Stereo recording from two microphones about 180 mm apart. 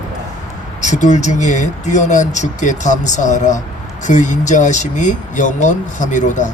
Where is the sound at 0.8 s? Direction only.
40° left (ahead or behind).